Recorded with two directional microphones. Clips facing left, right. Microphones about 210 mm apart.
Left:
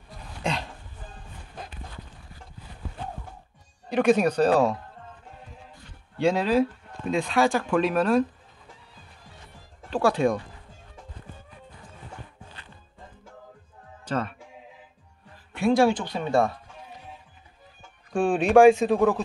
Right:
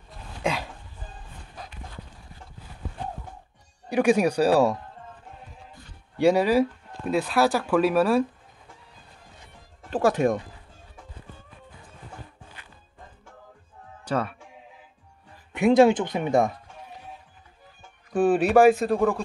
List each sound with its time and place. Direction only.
0.4 s a sound: 5° right (ahead or behind)
3.9 s speech: 10° right (ahead or behind)
6.1 s speech: 10° right (ahead or behind)
9.8 s music: 45° right (ahead or behind)
14.0 s speech: 10° right (ahead or behind)
15.5 s speech: 20° right (ahead or behind)
18.1 s speech: 5° right (ahead or behind)